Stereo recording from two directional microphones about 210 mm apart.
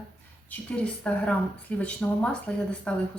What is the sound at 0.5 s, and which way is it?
Speech, 5° left (ahead or behind).